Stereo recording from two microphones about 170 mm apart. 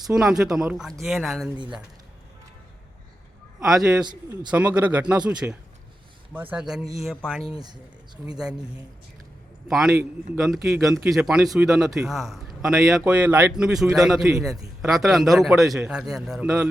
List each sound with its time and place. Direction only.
0.1 s a man's voice: 5° right (ahead or behind)
3.6 s a man's voice: centre (ahead or behind)
4.0 s speech: 25° right (ahead or behind)
4.5 s a man's voice: 10° right (ahead or behind)
7.6 s speech: 25° right (ahead or behind)
8.4 s a man's voice: 5° right (ahead or behind)